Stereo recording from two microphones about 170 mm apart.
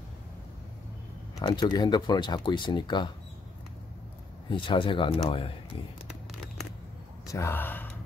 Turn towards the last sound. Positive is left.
turn(degrees=10)  # may be behind; listen again after turning